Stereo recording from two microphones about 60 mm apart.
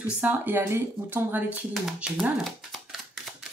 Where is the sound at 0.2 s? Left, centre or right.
Right.